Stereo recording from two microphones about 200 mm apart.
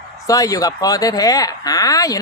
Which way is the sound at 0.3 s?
15° left (ahead or behind).